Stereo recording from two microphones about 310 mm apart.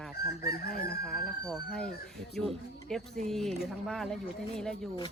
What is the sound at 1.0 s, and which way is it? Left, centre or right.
Speech, centre.